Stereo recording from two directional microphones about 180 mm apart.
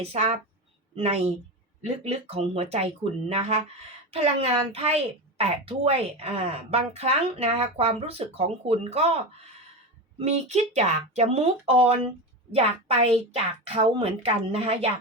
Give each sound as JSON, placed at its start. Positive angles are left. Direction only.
{"t": 0.0, "sound": "a woman's voice", "side_deg": -35}